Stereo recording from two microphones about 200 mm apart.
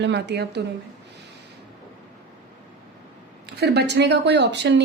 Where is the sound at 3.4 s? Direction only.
55° right (ahead or behind).